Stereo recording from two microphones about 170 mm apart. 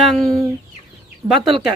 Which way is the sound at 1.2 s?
15° right (ahead or behind).